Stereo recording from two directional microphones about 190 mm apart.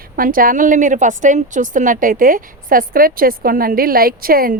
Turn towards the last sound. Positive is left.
turn(degrees=-50)  # may be behind; listen again after turning